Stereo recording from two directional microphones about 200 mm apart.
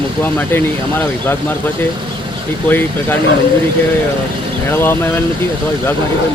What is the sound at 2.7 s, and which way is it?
Speech, 10° left (ahead or behind).